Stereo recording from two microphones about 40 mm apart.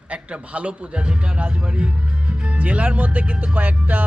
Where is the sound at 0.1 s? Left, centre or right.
Right.